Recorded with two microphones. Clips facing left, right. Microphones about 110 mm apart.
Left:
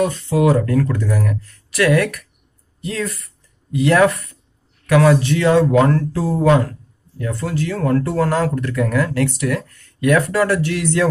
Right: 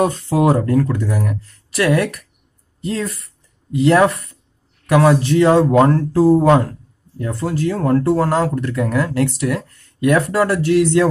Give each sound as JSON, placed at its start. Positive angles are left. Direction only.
{"t": 0.0, "sound": "speech", "side_deg": -35}
{"t": 5.5, "sound": "speech", "side_deg": -35}